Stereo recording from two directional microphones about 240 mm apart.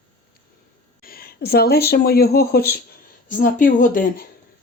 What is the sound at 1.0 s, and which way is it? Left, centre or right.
Speech, left.